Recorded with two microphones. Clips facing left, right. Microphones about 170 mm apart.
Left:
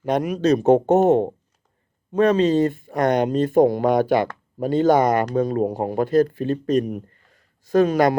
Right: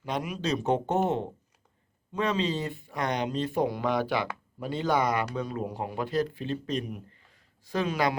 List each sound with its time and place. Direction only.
0.0 s speech: 45° left (ahead or behind)